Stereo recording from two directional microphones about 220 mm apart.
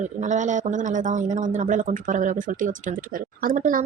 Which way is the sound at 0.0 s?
35° right (ahead or behind).